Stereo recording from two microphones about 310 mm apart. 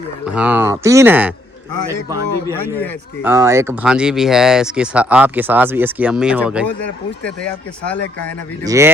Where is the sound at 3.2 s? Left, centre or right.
Centre.